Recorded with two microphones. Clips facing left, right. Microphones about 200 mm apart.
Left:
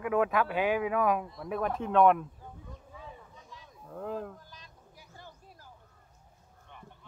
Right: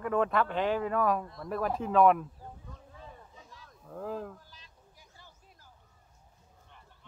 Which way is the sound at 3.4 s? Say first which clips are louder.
Left 2 dB; centre (ahead or behind).